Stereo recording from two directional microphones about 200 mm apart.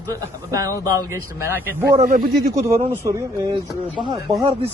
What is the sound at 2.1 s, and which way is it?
Speech, 45° right (ahead or behind).